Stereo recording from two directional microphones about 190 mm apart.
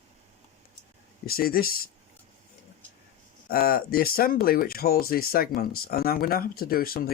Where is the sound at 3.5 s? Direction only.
50° left (ahead or behind).